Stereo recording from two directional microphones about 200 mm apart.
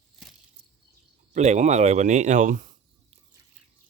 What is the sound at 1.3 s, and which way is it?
Speech, 35° right (ahead or behind).